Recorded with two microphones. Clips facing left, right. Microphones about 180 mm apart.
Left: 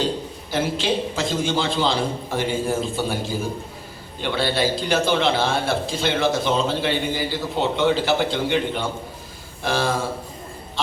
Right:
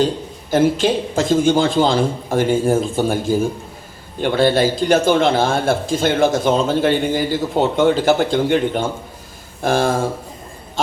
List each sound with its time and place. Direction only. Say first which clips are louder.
0.5 s speech: right 7 dB; 50° right (ahead or behind)